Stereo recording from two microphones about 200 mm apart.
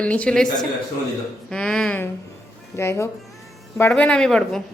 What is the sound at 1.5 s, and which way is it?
Speech, 5° left (ahead or behind).